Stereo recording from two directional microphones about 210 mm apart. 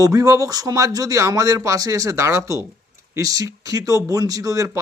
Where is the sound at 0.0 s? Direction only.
15° right (ahead or behind).